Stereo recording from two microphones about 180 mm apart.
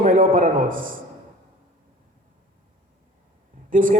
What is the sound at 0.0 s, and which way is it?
Speech, 45° right (ahead or behind).